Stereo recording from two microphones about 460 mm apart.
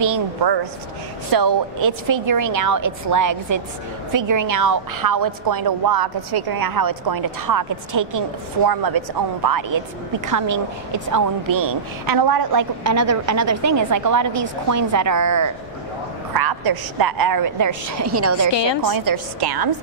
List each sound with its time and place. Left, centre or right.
0.0 s a woman's voice: right
12.8 s a woman's voice: right
16.3 s a woman's voice: right
18.5 s a woman's voice: left
18.9 s a woman's voice: right